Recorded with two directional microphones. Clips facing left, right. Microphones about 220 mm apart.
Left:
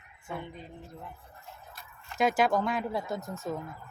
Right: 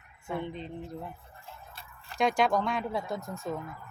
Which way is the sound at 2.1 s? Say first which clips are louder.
Even; 5° left (ahead or behind).